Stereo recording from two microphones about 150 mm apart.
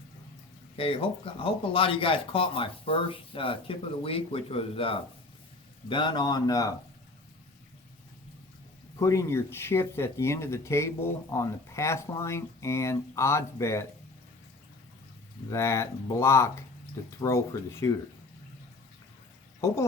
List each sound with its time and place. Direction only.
0.8 s speech: 40° left (ahead or behind)
9.0 s speech: 20° left (ahead or behind)
15.4 s speech: 20° left (ahead or behind)